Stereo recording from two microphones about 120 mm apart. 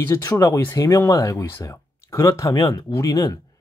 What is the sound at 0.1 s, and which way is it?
Speech, 25° left (ahead or behind).